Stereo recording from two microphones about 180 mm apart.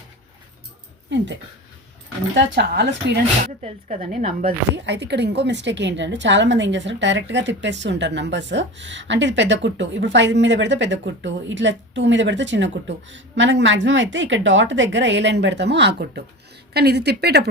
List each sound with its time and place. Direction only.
1.1 s a woman's voice: 80° right
2.3 s speech: 75° right (ahead or behind)
3.4 s speech: 45° right (ahead or behind)
4.7 s a woman's voice: 75° right (ahead or behind)